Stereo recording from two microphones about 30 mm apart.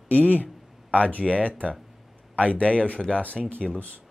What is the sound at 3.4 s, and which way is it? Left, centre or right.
Speech, centre.